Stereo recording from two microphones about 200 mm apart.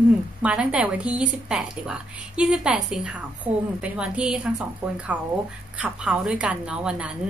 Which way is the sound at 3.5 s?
30° right (ahead or behind).